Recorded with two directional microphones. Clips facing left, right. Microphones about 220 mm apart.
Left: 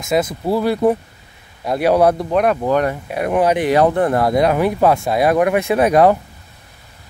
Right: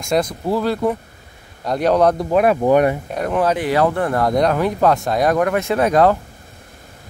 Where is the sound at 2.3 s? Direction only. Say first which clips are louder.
Right 2 dB; 5° right (ahead or behind).